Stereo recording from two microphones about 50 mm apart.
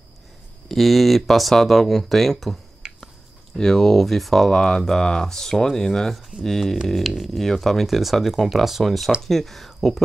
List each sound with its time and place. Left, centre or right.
0.7 s speech: centre
2.8 s a sound: centre
3.5 s speech: centre